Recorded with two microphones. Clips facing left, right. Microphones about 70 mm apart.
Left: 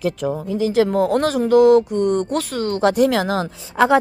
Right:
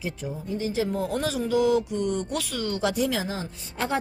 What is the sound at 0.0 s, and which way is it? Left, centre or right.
A woman's voice, left.